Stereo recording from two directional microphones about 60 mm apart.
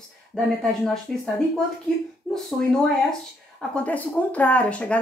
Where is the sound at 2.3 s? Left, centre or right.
Centre.